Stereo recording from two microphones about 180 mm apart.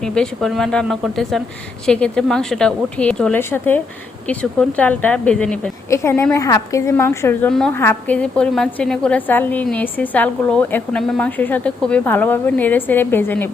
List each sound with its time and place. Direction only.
0.0 s a woman's voice: 5° left (ahead or behind)
4.8 s a woman's voice: 10° left (ahead or behind)